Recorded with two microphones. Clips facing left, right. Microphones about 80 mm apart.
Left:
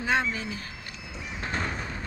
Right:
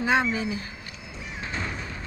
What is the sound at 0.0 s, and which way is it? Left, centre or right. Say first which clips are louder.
Speech: right 3 dB; centre.